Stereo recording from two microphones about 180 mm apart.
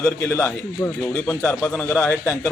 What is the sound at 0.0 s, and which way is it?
A man's voice, 15° left (ahead or behind).